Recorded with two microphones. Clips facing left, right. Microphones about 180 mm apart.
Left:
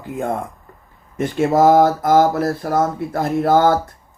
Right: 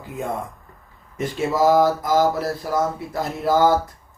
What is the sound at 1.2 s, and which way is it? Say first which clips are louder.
Speech: left 5 dB; 55° left (ahead or behind).